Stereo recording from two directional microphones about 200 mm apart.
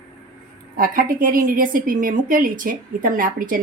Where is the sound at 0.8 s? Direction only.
45° right (ahead or behind).